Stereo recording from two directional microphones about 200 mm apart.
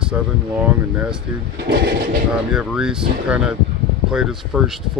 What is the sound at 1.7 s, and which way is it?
Speech, 50° right (ahead or behind).